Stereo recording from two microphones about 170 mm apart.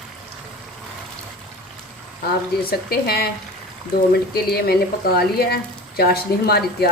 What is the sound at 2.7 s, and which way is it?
Speech, 65° left (ahead or behind).